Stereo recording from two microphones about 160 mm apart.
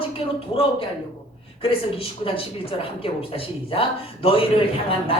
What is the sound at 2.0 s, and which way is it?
Speech, 35° left (ahead or behind).